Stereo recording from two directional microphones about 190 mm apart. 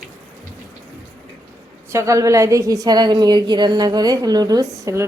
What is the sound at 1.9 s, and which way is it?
A woman's voice, 15° right (ahead or behind).